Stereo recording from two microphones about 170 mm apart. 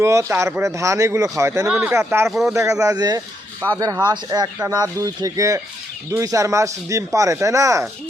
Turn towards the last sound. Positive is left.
turn(degrees=-20)  # may be behind; listen again after turning